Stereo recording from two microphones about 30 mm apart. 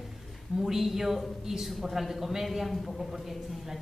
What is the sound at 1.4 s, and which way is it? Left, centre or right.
Speech, centre.